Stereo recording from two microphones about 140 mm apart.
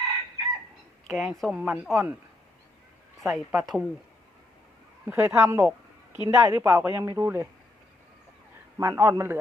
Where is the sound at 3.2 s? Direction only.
Centre (ahead or behind).